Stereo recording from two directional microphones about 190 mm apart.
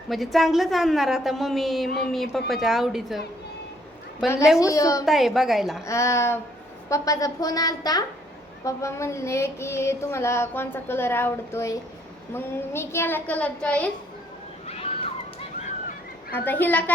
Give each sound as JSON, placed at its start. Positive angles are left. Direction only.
{"t": 0.1, "sound": "a woman's voice", "side_deg": 0}
{"t": 4.2, "sound": "a woman's voice", "side_deg": 0}
{"t": 4.6, "sound": "child singing", "side_deg": 15}
{"t": 5.0, "sound": "a woman's voice", "side_deg": 0}
{"t": 5.8, "sound": "child singing", "side_deg": 15}
{"t": 6.8, "sound": "a woman's voice", "side_deg": 15}
{"t": 8.6, "sound": "child singing", "side_deg": 15}
{"t": 14.7, "sound": "cat", "side_deg": 30}
{"t": 16.3, "sound": "child singing", "side_deg": 10}